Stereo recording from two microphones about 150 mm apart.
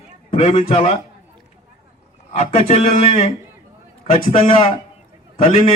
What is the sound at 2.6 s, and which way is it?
A man's voice, 45° left (ahead or behind).